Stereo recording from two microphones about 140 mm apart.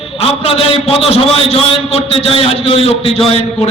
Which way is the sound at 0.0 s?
45° left (ahead or behind).